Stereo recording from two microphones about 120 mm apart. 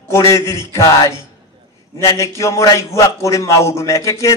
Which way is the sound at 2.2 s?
25° left (ahead or behind).